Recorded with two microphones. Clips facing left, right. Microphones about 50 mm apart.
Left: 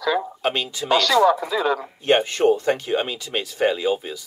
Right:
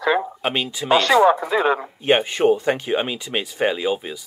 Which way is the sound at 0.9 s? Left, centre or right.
Right.